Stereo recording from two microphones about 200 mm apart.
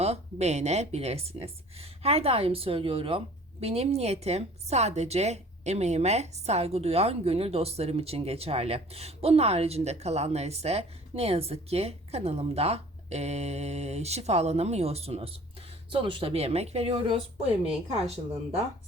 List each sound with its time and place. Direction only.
0.0 s a woman's voice: 35° right (ahead or behind)